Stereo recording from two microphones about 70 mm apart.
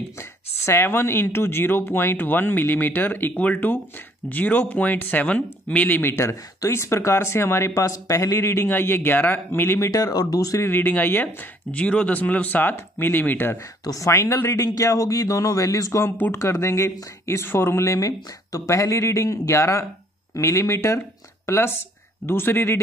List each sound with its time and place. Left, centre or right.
0.2 s speech: left
6.2 s speech: left
9.8 s speech: left
10.6 s speech: left
11.7 s speech: centre
13.8 s speech: left